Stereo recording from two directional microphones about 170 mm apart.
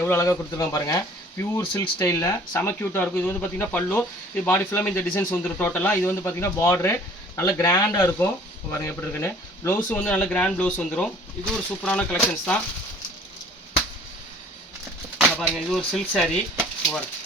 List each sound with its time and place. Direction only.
0.0 s speech: 15° left (ahead or behind)
15.2 s speech: centre (ahead or behind)